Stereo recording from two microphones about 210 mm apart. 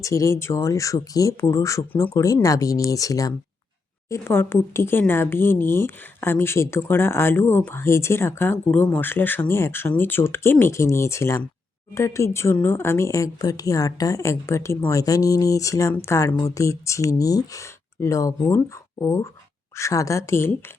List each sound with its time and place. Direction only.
0.0 s a woman's voice: 15° left (ahead or behind)